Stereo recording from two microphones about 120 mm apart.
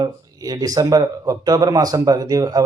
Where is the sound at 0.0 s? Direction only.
35° right (ahead or behind).